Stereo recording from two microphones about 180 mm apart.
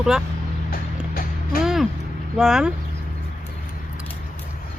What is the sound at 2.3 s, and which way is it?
Speech, 5° right (ahead or behind).